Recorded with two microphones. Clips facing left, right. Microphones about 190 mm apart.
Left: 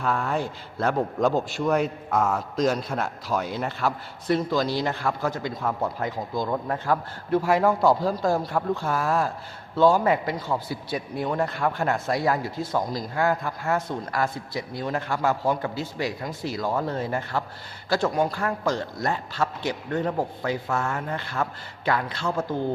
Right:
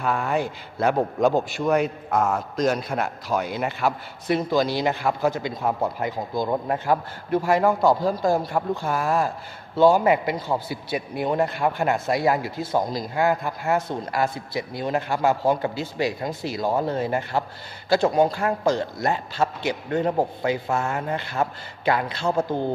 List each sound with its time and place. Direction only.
0.0 s a man's voice: 5° right (ahead or behind)
4.4 s a man's voice: 20° right (ahead or behind)
6.0 s a man's voice: 5° right (ahead or behind)
6.5 s speech: 20° right (ahead or behind)
7.3 s a man's voice: centre (ahead or behind)
12.7 s speech: 20° right (ahead or behind)